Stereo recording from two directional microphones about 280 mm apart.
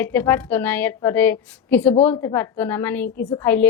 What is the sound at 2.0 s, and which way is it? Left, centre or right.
Speech, left.